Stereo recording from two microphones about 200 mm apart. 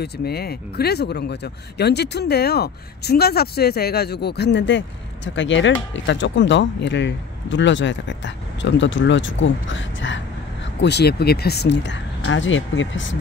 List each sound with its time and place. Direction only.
0.0 s speech: 50° left (ahead or behind); by 13.2 s 70° left (ahead or behind)